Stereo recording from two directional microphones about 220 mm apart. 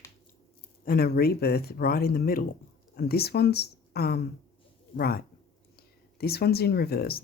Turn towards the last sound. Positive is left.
turn(degrees=45)  # may be behind; listen again after turning